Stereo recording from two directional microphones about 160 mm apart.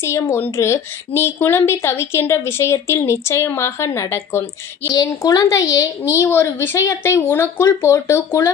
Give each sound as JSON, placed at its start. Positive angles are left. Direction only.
{"t": 0.0, "sound": "a woman's voice", "side_deg": 15}